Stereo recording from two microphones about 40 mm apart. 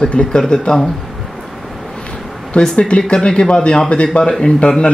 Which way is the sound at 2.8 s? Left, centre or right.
Left.